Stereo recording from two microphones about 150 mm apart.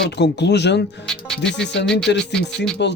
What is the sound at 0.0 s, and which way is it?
Speech, 90° left.